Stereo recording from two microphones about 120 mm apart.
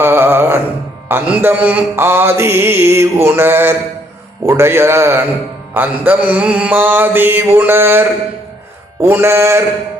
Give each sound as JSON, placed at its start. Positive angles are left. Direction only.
{"t": 0.0, "sound": "music", "side_deg": -20}
{"t": 1.0, "sound": "mantra", "side_deg": -15}